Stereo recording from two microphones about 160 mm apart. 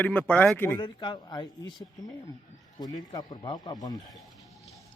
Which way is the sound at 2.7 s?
25° left (ahead or behind).